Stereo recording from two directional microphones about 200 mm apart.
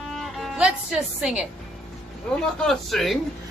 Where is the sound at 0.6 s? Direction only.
5° right (ahead or behind).